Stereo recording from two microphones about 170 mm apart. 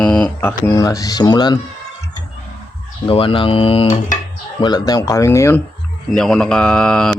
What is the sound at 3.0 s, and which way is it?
Speech, 30° left (ahead or behind).